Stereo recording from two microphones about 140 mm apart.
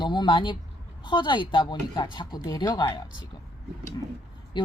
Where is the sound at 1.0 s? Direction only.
35° left (ahead or behind).